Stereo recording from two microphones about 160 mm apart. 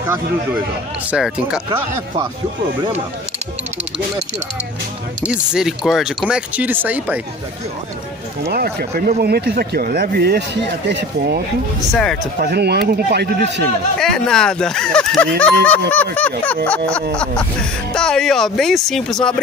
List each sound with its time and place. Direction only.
1.1 s speech: 5° right (ahead or behind)
5.2 s speech: 5° right (ahead or behind)
8.5 s speech: 75° right (ahead or behind)
13.9 s speech: 5° left (ahead or behind)
15.9 s a sound: 10° left (ahead or behind)
17.9 s speech: 5° left (ahead or behind)